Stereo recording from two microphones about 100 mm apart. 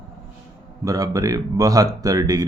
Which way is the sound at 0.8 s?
35° right (ahead or behind).